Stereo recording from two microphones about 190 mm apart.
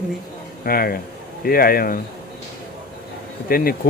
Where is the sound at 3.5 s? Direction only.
50° left (ahead or behind).